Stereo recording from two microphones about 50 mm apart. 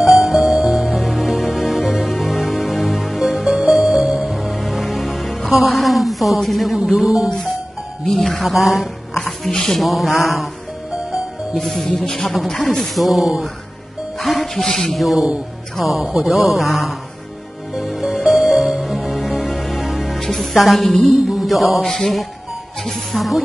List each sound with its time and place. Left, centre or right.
0.1 s music: centre
6.8 s music: centre
8.0 s speech: centre
9.1 s a sound: centre
11.5 s speech: centre
17.7 s music: centre
20.2 s music: centre
20.5 s speech: centre
21.3 s music: centre
21.8 s speech: centre